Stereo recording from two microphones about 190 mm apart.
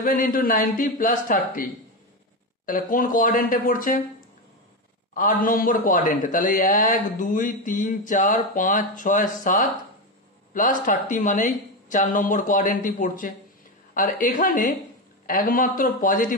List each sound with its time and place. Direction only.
0.0 s speech: 45° left (ahead or behind)
5.1 s speech: 45° left (ahead or behind)